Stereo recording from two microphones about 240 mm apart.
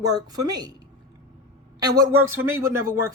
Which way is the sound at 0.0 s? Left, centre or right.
Centre.